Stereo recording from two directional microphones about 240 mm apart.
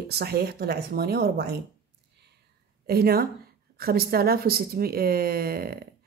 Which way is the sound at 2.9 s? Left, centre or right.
Right.